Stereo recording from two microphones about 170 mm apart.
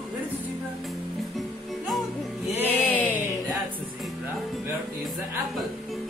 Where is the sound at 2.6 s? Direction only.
10° left (ahead or behind).